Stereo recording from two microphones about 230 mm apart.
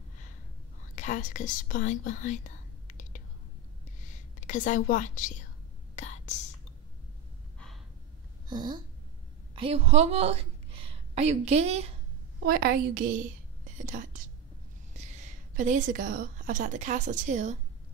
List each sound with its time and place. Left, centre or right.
0.9 s speech: left
4.4 s a woman's voice: left
5.9 s whispering: left
7.5 s gasp: centre
8.5 s a woman's voice: centre
12.4 s a woman's voice: right